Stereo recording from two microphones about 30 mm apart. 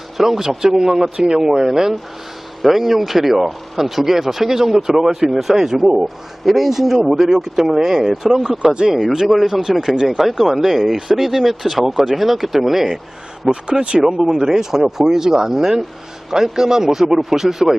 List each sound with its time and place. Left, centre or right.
0.2 s speech: centre
2.6 s speech: centre
8.7 s speech: right
9.3 s speech: centre
9.9 s speech: right
10.2 s speech: centre
13.5 s speech: right
14.2 s speech: centre